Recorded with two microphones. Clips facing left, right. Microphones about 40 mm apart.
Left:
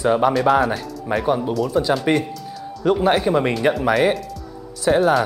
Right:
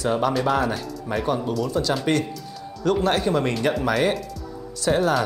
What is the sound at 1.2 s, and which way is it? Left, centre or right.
Speech, centre.